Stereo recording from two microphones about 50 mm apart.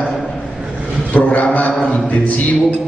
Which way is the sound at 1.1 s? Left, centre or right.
Left.